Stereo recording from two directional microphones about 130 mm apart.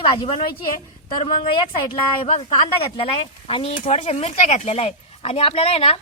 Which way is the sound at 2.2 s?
50° left (ahead or behind).